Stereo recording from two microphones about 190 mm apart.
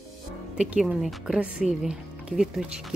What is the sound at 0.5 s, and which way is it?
Speech, 5° right (ahead or behind).